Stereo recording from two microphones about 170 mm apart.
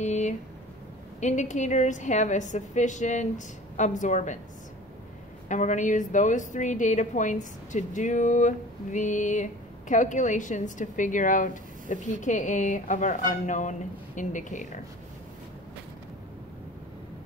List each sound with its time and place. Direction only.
0.0 s a sound: 45° left (ahead or behind)
1.2 s a woman's voice: 45° left (ahead or behind)
5.5 s a woman's voice: 45° left (ahead or behind)